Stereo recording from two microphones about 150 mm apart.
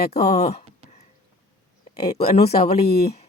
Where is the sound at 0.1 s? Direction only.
45° left (ahead or behind).